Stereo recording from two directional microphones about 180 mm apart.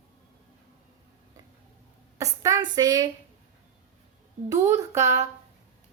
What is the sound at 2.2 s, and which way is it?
Speech, 20° right (ahead or behind).